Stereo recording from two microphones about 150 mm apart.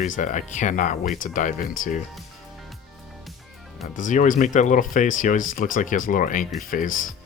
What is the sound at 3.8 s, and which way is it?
Speech, 60° left (ahead or behind).